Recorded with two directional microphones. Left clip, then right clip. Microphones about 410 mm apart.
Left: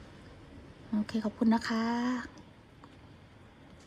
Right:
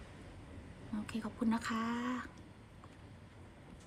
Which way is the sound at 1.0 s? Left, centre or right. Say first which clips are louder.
Left 7 dB; centre.